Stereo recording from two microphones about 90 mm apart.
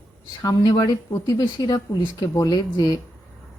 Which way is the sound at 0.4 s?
45° left (ahead or behind).